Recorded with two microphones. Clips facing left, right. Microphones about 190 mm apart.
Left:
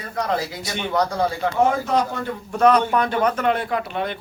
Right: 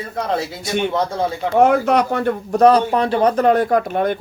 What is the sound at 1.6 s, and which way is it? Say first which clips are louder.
Speech: right 6 dB; 65° right (ahead or behind).